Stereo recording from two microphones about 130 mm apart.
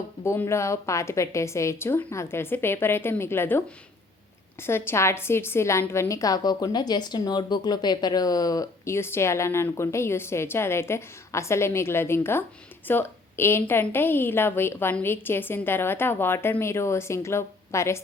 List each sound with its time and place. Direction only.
0.3 s speech: 20° left (ahead or behind)
4.6 s a woman's voice: 20° left (ahead or behind)